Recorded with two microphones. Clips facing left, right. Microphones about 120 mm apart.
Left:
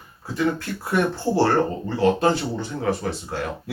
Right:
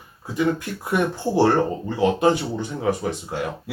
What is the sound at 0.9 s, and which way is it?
Speech, 15° right (ahead or behind).